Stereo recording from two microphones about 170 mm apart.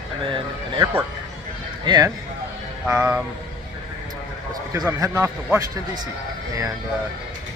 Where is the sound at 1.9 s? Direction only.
25° right (ahead or behind).